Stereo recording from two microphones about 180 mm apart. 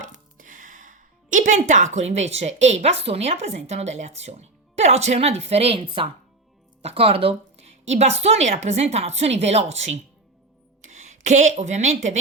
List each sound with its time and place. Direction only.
0.0 s a woman's voice: 45° right (ahead or behind)